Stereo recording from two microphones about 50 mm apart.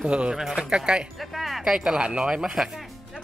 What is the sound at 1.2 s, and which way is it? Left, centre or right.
Speech, centre.